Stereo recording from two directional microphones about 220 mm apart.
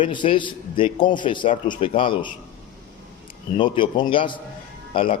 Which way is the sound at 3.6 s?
20° left (ahead or behind).